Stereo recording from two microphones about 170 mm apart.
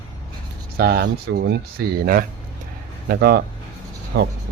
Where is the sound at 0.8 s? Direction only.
70° right (ahead or behind).